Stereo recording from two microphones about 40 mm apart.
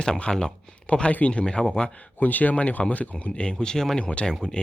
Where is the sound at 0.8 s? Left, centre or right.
Left.